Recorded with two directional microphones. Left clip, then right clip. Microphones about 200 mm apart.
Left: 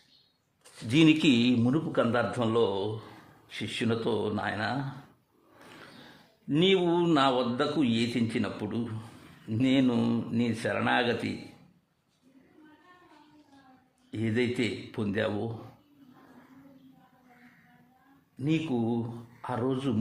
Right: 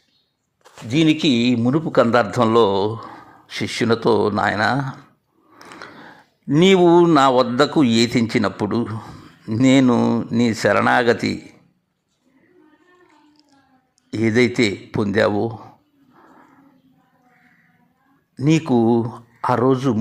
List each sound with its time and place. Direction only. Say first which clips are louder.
0.9 s speech: right 6 dB; 15° right (ahead or behind)
1.7 s speech: right 12 dB; 30° right (ahead or behind)
6.6 s speech: right 12 dB; 40° right (ahead or behind)
9.9 s speech: right 12 dB; 20° right (ahead or behind)
10.3 s speech: right 16 dB; 35° right (ahead or behind)
14.1 s speech: right 12 dB; 35° right (ahead or behind)
18.3 s speech: right 12 dB; 40° right (ahead or behind)